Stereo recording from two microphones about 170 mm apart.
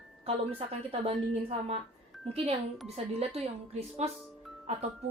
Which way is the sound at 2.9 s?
35° right (ahead or behind).